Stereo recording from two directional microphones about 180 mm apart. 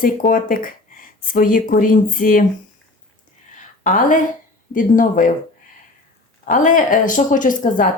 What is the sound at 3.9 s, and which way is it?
Speech, 45° left (ahead or behind).